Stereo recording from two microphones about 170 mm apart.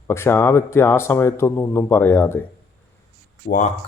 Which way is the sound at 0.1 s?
15° left (ahead or behind).